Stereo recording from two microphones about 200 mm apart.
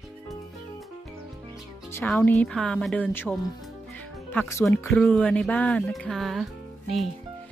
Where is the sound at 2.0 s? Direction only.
10° left (ahead or behind).